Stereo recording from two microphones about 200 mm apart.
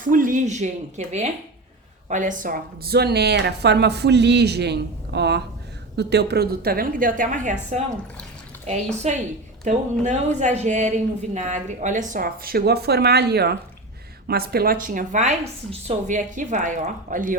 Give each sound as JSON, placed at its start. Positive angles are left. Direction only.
{"t": 0.0, "sound": "a woman's voice", "side_deg": -45}